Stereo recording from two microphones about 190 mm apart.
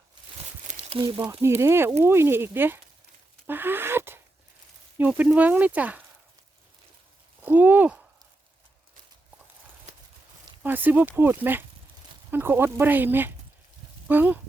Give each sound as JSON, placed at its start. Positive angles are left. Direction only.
{"t": 0.7, "sound": "a sound", "side_deg": -30}
{"t": 1.2, "sound": "speech", "side_deg": -15}
{"t": 7.4, "sound": "speech", "side_deg": -10}
{"t": 9.9, "sound": "clip-clop", "side_deg": -35}
{"t": 10.6, "sound": "speech", "side_deg": -10}